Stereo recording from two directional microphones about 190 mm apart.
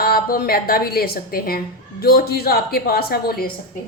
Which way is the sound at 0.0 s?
50° left (ahead or behind).